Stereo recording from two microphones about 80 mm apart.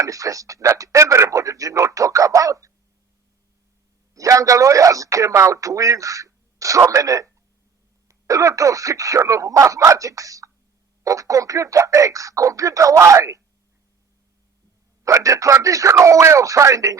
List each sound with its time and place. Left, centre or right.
0.0 s a man's voice: right
4.1 s a man's voice: right
15.0 s a man's voice: right